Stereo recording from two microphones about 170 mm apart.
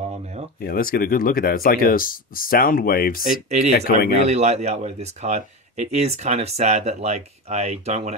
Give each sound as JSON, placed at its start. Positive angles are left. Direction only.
{"t": 0.6, "sound": "speech", "side_deg": 60}
{"t": 3.3, "sound": "speech", "side_deg": -45}